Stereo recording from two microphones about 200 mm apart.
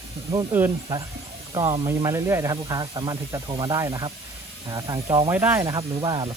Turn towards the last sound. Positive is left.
turn(degrees=-20)  # may be behind; listen again after turning